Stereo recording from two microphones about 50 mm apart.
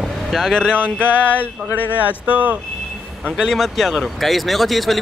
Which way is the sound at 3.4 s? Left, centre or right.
Centre.